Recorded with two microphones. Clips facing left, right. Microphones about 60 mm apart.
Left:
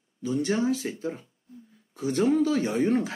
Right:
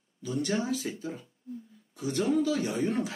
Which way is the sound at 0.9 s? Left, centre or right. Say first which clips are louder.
Left 5 dB; left.